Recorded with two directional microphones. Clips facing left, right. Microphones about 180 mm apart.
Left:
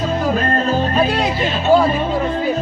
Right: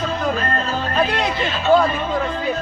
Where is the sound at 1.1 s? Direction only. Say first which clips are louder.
Left 3 dB; 5° left (ahead or behind).